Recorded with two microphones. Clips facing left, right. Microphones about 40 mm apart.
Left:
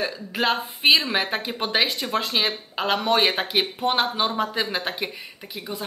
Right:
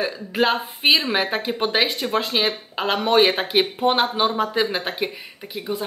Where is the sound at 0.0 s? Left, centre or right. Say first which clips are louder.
Right 3 dB; centre.